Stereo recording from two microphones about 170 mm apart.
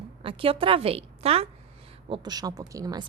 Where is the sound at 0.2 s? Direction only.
30° right (ahead or behind).